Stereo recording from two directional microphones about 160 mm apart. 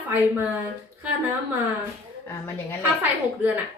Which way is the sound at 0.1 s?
10° right (ahead or behind).